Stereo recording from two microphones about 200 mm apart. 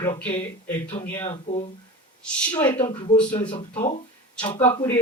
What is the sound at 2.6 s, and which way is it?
A woman's voice, 25° left (ahead or behind).